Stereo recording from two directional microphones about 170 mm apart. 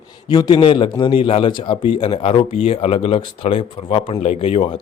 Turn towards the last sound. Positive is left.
turn(degrees=35)  # may be behind; listen again after turning